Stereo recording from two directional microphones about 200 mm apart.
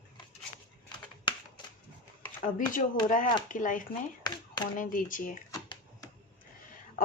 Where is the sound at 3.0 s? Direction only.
40° left (ahead or behind).